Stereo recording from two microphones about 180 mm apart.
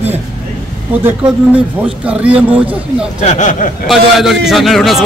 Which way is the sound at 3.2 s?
45° left (ahead or behind).